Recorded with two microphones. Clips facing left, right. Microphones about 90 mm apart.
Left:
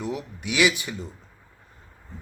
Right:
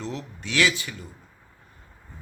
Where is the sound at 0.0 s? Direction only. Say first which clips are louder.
Left 3 dB; 15° left (ahead or behind).